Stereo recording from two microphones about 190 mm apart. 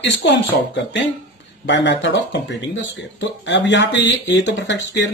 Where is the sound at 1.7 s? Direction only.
70° left (ahead or behind).